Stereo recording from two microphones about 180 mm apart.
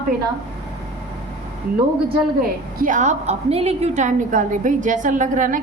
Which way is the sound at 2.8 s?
45° right (ahead or behind).